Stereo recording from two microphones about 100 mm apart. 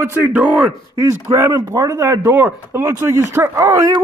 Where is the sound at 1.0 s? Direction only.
30° right (ahead or behind).